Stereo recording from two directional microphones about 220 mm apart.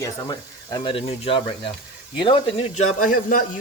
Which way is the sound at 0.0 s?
20° left (ahead or behind).